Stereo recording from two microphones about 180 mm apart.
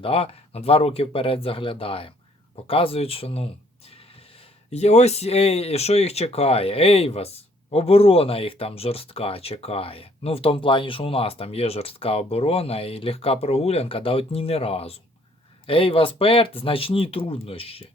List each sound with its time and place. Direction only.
0.0 s speech: 30° left (ahead or behind)